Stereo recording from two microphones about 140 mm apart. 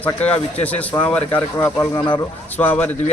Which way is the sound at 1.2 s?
15° left (ahead or behind).